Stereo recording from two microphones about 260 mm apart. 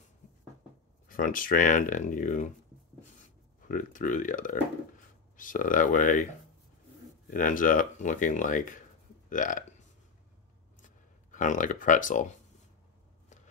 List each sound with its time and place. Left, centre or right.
1.0 s speech: left
3.6 s speech: left
7.2 s speech: left
11.3 s speech: left